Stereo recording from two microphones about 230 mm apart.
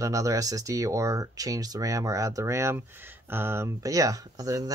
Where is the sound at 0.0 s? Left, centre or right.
Centre.